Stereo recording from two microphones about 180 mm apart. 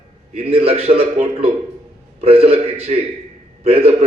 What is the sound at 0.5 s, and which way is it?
Speech, 35° right (ahead or behind).